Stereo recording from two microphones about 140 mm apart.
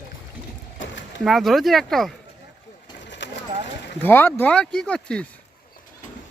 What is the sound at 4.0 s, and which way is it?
Speech, 15° left (ahead or behind).